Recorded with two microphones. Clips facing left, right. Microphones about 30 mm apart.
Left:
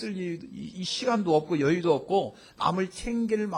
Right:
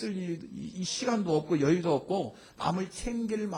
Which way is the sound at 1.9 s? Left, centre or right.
Centre.